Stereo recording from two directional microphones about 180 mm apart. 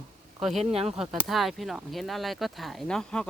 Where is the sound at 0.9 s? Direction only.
Centre (ahead or behind).